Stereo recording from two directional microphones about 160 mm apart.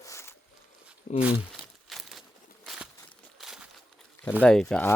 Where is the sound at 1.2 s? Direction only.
10° right (ahead or behind).